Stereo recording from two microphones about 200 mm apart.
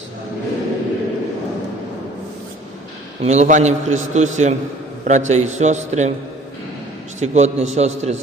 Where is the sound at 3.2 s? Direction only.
35° right (ahead or behind).